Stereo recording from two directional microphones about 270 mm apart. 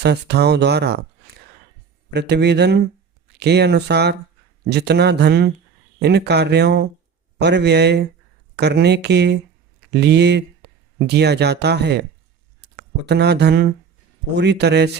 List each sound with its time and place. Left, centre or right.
0.0 s speech: right
2.0 s speech: right